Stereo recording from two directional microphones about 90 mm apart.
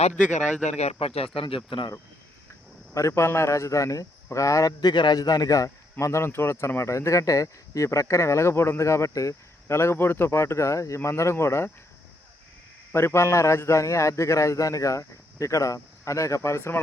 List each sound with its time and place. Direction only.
0.9 s speech: 90° left
2.9 s a man's voice: 35° left (ahead or behind)
4.8 s a man's voice: 55° left (ahead or behind); by 11.7 s 30° left (ahead or behind)
12.9 s a man's voice: 30° left (ahead or behind)